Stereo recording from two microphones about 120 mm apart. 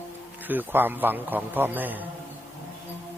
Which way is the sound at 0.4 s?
15° right (ahead or behind).